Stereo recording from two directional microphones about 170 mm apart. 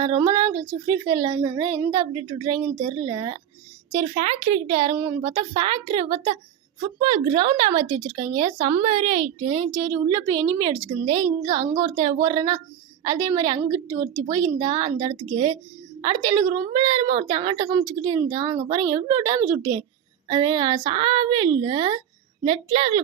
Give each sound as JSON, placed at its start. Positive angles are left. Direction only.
{"t": 0.0, "sound": "speech", "side_deg": -25}
{"t": 3.9, "sound": "a woman's voice", "side_deg": -45}
{"t": 5.2, "sound": "a woman's voice", "side_deg": -25}